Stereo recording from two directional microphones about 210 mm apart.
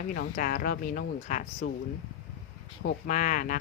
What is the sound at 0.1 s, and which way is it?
Speech, 45° left (ahead or behind).